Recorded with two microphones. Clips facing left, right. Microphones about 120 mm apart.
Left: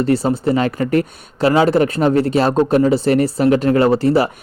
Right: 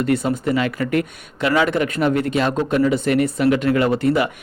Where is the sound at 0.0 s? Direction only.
30° left (ahead or behind).